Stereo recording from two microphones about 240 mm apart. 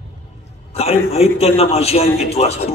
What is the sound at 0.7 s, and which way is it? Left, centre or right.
A man's voice, left.